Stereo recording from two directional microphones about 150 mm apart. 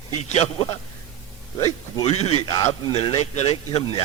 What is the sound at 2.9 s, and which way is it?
Speech, 40° left (ahead or behind).